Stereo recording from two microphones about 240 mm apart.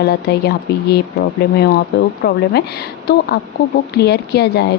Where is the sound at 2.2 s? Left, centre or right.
Left.